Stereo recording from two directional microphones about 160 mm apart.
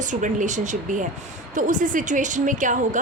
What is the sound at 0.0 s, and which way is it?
A woman's voice, 50° right (ahead or behind).